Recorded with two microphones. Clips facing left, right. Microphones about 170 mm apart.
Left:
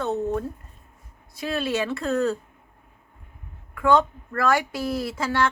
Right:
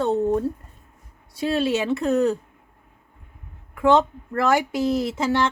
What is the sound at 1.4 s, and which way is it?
Speech, 25° right (ahead or behind).